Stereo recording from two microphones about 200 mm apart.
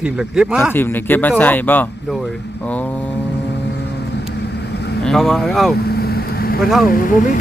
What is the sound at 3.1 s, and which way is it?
Vehicle, 60° left (ahead or behind).